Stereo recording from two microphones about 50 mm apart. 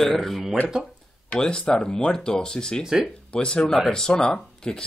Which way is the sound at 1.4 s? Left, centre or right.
Centre.